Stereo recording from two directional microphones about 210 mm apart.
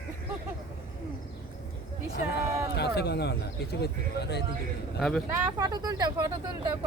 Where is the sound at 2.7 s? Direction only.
50° left (ahead or behind).